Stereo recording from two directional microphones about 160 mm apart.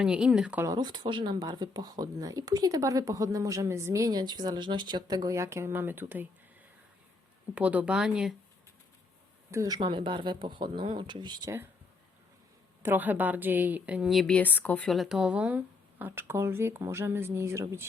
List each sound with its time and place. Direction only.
0.0 s speech: 5° right (ahead or behind)
0.6 s speech: 25° right (ahead or behind)
7.5 s a woman's voice: 10° right (ahead or behind)
9.5 s speech: 20° right (ahead or behind)
12.8 s a woman's voice: 10° right (ahead or behind)